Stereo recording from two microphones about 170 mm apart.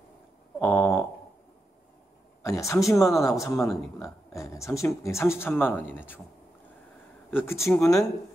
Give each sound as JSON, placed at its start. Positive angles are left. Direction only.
{"t": 0.7, "sound": "a sound", "side_deg": 15}
{"t": 2.4, "sound": "speech", "side_deg": 15}
{"t": 7.2, "sound": "speech", "side_deg": 15}